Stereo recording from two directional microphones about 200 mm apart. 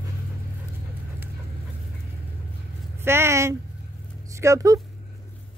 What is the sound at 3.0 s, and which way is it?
Speech, 10° right (ahead or behind).